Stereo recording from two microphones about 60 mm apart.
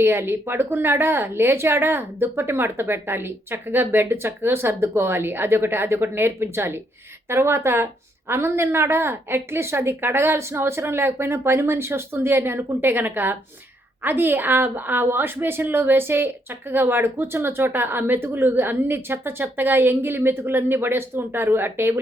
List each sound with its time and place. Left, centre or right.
0.0 s a woman's voice: right